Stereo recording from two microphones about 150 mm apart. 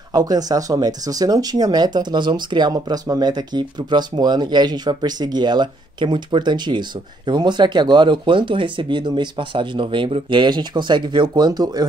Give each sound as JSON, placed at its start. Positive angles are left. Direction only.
{"t": 0.1, "sound": "speech", "side_deg": -25}